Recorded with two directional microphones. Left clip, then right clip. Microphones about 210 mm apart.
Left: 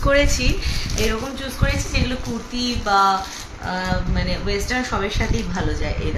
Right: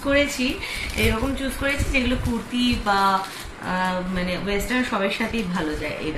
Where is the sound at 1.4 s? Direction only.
15° left (ahead or behind).